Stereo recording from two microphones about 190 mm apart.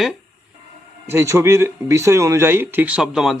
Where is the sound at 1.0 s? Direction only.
15° right (ahead or behind).